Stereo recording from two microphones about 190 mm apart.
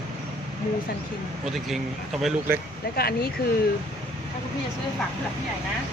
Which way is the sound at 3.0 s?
55° left (ahead or behind).